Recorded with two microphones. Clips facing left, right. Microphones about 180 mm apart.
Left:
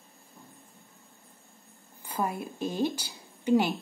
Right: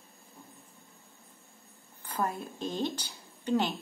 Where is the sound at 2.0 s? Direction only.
10° left (ahead or behind).